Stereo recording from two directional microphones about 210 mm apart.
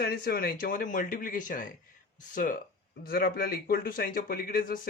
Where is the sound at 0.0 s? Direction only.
45° left (ahead or behind).